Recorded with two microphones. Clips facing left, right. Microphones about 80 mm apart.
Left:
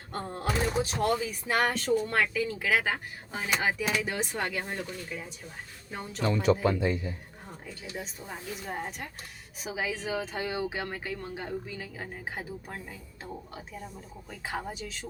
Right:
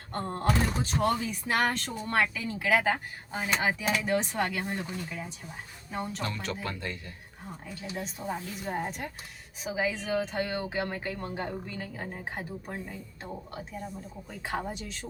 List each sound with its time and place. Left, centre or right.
0.1 s music: centre
0.6 s speech: centre
6.2 s speech: centre
8.2 s speech: right
8.6 s speech: centre